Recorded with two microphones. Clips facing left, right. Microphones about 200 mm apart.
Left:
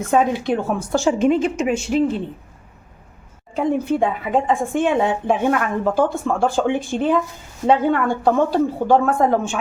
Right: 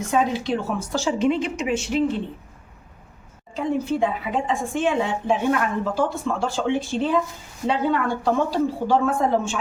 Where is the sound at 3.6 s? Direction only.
55° left (ahead or behind).